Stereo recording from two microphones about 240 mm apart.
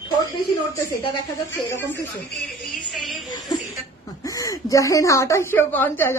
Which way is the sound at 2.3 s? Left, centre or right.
Centre.